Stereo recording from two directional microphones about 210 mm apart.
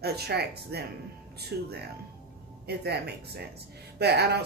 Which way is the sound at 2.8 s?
50° right (ahead or behind).